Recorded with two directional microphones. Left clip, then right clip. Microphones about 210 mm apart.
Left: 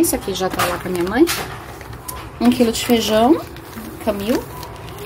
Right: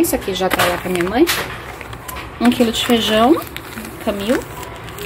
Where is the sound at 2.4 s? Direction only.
Centre (ahead or behind).